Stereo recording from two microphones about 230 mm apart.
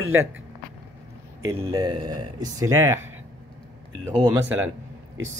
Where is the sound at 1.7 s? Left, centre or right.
Centre.